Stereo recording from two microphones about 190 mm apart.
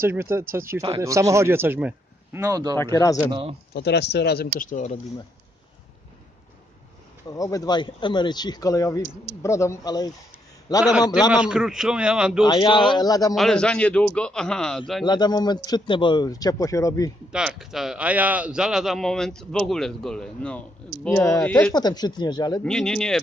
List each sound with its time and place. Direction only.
0.0 s a man's voice: 15° right (ahead or behind)
2.8 s speech: 15° left (ahead or behind)
3.3 s speech: 30° right (ahead or behind)
3.7 s speech: 60° left (ahead or behind); by 5.0 s 40° left (ahead or behind)
7.2 s speech: 20° left (ahead or behind)
11.3 s a man's voice: 5° right (ahead or behind)
12.4 s speech: 25° left (ahead or behind)
13.3 s a man's voice: centre (ahead or behind)
15.0 s speech: 20° left (ahead or behind)
17.3 s a man's voice: 5° right (ahead or behind)
21.7 s speech: 20° left (ahead or behind)
22.6 s a man's voice: 5° left (ahead or behind)